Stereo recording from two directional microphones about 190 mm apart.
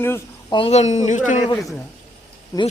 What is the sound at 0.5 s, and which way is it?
Speech, 30° left (ahead or behind).